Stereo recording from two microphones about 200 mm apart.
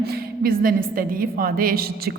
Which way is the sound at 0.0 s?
50° right (ahead or behind).